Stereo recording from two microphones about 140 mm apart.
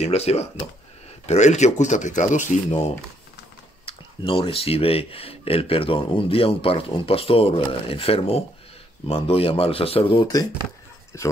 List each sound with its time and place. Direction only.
0.0 s speech: 50° left (ahead or behind)
3.8 s speech: 40° left (ahead or behind)
10.1 s speech: 25° left (ahead or behind)